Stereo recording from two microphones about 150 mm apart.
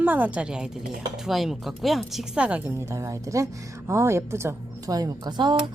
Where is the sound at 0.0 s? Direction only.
10° right (ahead or behind); by 5.5 s 30° right (ahead or behind).